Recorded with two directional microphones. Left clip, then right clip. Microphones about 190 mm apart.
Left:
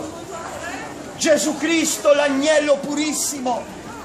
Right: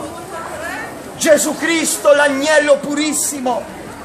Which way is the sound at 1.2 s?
15° right (ahead or behind).